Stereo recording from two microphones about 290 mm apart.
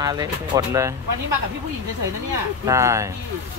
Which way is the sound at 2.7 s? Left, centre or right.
Centre.